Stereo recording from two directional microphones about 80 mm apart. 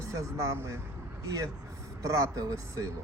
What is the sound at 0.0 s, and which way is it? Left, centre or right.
Speech, right.